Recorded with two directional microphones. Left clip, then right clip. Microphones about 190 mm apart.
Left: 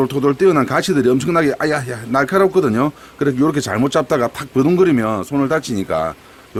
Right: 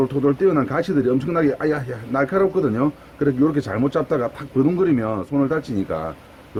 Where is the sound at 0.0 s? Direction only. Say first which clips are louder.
Left 4 dB; 55° left (ahead or behind).